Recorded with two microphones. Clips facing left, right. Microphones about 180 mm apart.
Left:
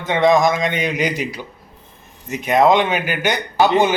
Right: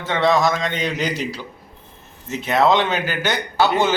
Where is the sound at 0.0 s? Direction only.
15° left (ahead or behind).